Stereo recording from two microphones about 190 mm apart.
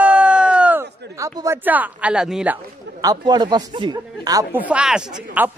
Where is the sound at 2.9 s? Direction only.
20° right (ahead or behind).